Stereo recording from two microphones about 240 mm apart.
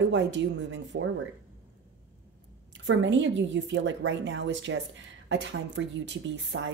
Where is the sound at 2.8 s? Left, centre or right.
Right.